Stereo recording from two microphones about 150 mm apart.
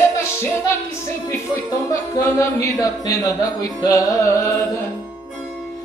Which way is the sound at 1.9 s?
20° left (ahead or behind).